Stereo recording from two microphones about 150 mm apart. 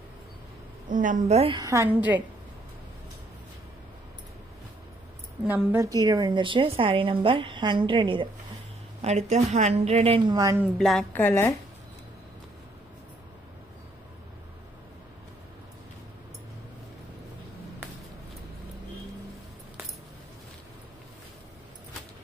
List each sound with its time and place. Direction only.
0.8 s a woman's voice: 60° right (ahead or behind)
1.6 s a woman's voice: 20° right (ahead or behind)
5.4 s a woman's voice: 10° right (ahead or behind)
5.9 s a woman's voice: 25° right (ahead or behind)
9.0 s a woman's voice: 45° right (ahead or behind); by 10.6 s 25° right (ahead or behind)
10.8 s a woman's voice: centre (ahead or behind)
11.1 s a woman's voice: 15° left (ahead or behind)